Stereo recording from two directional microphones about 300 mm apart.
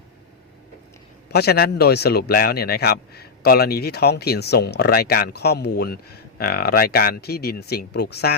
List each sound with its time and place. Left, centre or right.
1.3 s speech: left